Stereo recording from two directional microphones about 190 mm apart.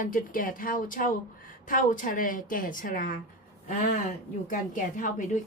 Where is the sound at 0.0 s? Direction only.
45° left (ahead or behind).